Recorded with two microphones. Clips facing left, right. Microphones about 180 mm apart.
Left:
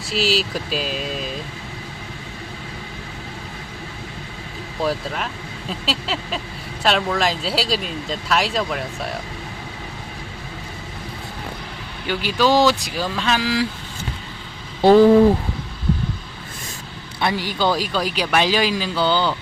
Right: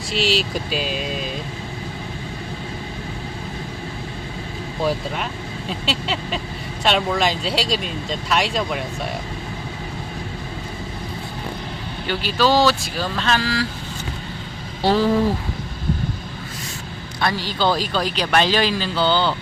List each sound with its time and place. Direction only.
0.1 s speech: centre (ahead or behind)
4.8 s speech: centre (ahead or behind)
12.0 s speech: 15° left (ahead or behind)
14.8 s speech: 50° left (ahead or behind)
17.2 s speech: 20° left (ahead or behind)